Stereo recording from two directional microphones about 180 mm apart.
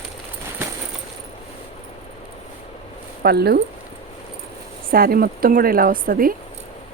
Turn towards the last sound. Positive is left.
turn(degrees=-50)  # may be behind; listen again after turning